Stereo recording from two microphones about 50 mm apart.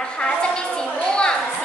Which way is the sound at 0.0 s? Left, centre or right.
Centre.